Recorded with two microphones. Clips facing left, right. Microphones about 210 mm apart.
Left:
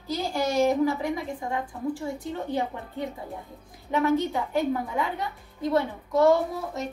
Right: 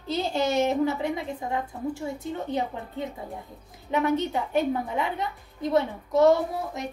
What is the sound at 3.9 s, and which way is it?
A woman's voice, 20° right (ahead or behind).